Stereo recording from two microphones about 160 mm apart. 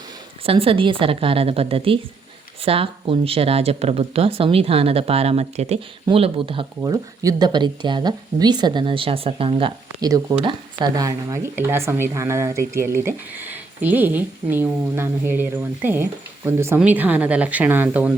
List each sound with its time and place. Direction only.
0.4 s speech: 35° right (ahead or behind)
6.8 s speech: 20° right (ahead or behind)